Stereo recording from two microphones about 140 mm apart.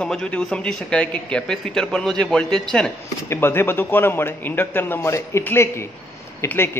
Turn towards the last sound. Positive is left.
turn(degrees=15)  # may be behind; listen again after turning